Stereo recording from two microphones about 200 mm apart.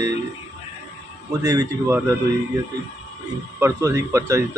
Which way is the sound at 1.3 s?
20° right (ahead or behind).